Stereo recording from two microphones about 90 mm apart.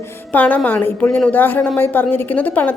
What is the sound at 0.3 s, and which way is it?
A woman's voice, 20° left (ahead or behind).